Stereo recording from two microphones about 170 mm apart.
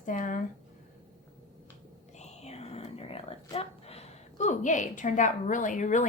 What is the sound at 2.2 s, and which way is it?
Whispering, 40° left (ahead or behind).